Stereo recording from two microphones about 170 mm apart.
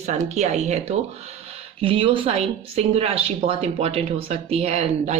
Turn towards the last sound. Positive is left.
turn(degrees=-40)  # may be behind; listen again after turning